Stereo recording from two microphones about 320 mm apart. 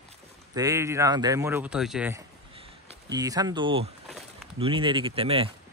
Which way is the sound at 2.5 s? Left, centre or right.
Centre.